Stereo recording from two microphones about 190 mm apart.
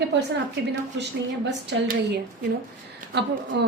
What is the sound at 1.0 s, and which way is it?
Speech, 75° right (ahead or behind).